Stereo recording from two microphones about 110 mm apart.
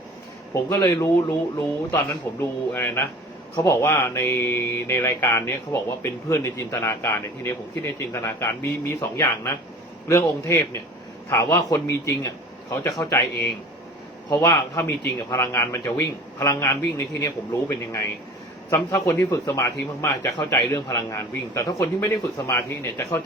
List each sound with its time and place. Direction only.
0.5 s speech: 25° left (ahead or behind)
14.3 s a man's voice: 40° left (ahead or behind)